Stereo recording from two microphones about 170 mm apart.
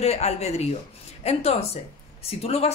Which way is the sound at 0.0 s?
40° left (ahead or behind).